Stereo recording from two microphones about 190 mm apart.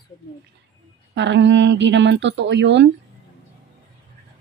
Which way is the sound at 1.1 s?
70° right (ahead or behind).